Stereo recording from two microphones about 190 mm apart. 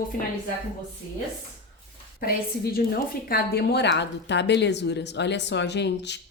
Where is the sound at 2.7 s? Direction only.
50° left (ahead or behind).